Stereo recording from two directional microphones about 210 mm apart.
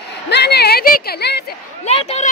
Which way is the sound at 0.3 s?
50° left (ahead or behind).